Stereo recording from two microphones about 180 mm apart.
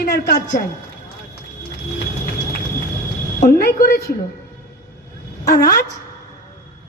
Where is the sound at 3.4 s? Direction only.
55° left (ahead or behind).